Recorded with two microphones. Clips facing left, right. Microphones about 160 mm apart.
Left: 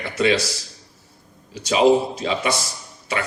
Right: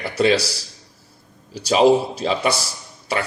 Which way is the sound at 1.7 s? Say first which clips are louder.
Right 1 dB; 35° right (ahead or behind).